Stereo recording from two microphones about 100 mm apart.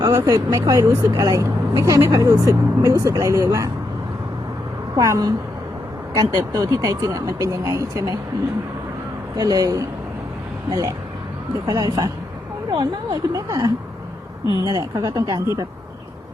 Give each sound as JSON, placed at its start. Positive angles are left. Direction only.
{"t": 0.0, "sound": "speech", "side_deg": -35}
{"t": 4.9, "sound": "speech", "side_deg": -35}
{"t": 9.3, "sound": "speech", "side_deg": -40}
{"t": 11.6, "sound": "speech", "side_deg": -40}